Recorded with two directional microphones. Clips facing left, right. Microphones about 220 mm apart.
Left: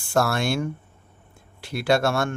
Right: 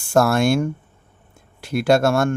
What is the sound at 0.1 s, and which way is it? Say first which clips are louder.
Speech: right 6 dB; 45° right (ahead or behind).